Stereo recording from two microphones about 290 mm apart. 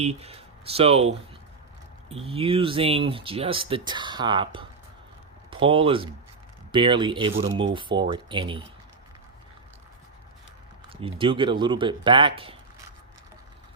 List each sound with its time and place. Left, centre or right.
0.0 s speech: right
7.4 s speech: right
7.7 s speech: centre
10.8 s speech: centre